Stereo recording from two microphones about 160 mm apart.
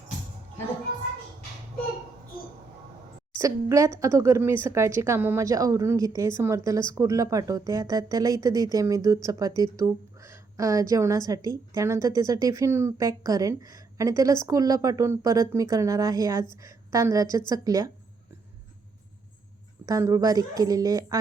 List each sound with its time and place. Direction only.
3.3 s a woman's voice: 20° right (ahead or behind)
19.8 s a woman's voice: 20° right (ahead or behind)